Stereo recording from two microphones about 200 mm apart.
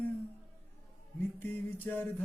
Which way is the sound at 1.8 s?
10° left (ahead or behind).